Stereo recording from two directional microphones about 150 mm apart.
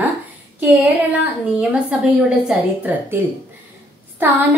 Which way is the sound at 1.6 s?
5° right (ahead or behind).